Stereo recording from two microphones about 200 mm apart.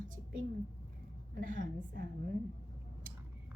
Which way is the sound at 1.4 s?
40° right (ahead or behind).